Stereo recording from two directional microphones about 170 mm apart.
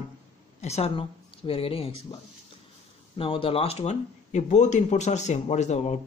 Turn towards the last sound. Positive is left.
turn(degrees=40)  # may be behind; listen again after turning